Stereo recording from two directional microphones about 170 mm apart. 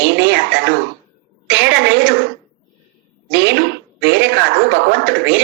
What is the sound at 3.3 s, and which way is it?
Speech, 90° right.